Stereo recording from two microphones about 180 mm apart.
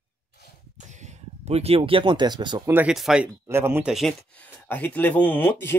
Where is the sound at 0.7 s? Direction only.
40° right (ahead or behind); by 2.7 s 25° right (ahead or behind).